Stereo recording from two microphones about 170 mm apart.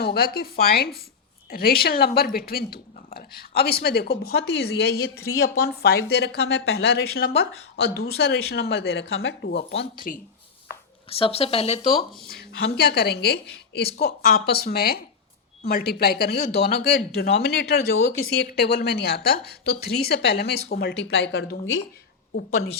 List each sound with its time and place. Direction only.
0.0 s a woman's voice: 65° left (ahead or behind); by 9.8 s 90° left
11.1 s speech: 35° left (ahead or behind)
12.3 s a woman's voice: 70° left (ahead or behind); by 21.5 s 85° left